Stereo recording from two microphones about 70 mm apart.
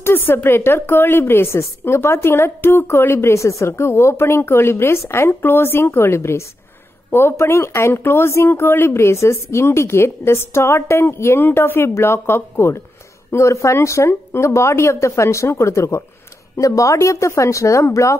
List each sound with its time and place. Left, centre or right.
0.0 s a woman's voice: left